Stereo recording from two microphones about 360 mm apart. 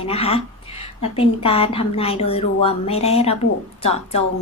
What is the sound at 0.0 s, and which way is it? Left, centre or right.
A woman's voice, centre.